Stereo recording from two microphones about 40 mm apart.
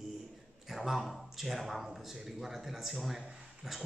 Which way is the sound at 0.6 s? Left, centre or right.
Centre.